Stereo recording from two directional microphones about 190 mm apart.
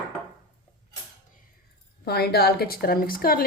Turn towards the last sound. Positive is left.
turn(degrees=50)  # may be behind; listen again after turning